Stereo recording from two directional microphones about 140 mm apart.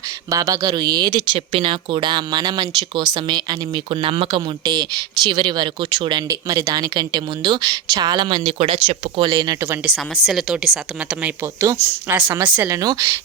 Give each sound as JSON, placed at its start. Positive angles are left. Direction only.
{"t": 0.3, "sound": "speech", "side_deg": -25}
{"t": 10.2, "sound": "a woman's voice", "side_deg": -5}
{"t": 11.6, "sound": "a woman's voice", "side_deg": -20}